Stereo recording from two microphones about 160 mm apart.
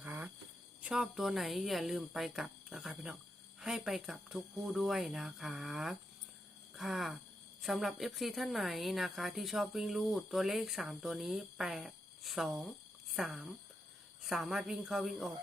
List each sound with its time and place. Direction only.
0.0 s cricket: 10° right (ahead or behind)
0.8 s a woman's voice: 5° right (ahead or behind)